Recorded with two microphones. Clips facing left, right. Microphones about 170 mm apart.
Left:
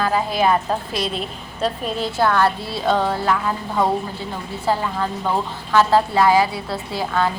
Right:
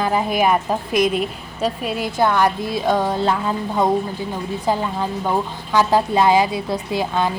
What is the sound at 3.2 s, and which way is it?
A woman's voice, 25° right (ahead or behind).